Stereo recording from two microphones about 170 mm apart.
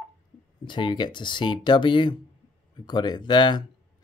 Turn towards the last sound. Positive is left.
turn(degrees=25)  # may be behind; listen again after turning